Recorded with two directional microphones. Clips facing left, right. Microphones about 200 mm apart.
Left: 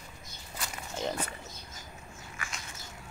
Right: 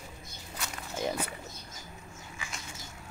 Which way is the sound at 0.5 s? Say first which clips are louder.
Right 1 dB; 10° right (ahead or behind).